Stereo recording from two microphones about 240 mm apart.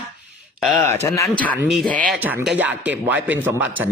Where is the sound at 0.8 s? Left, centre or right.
Centre.